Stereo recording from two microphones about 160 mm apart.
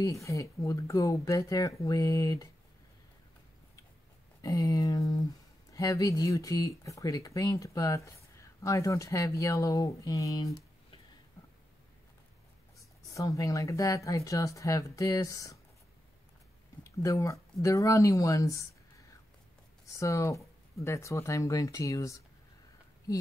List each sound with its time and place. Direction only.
0.0 s speech: 20° left (ahead or behind)
4.4 s speech: 20° left (ahead or behind)
13.1 s speech: 20° left (ahead or behind)
17.0 s speech: 20° left (ahead or behind)
19.9 s speech: 20° left (ahead or behind)